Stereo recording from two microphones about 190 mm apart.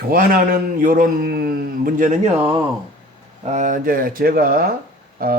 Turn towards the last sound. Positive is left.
turn(degrees=-50)  # may be behind; listen again after turning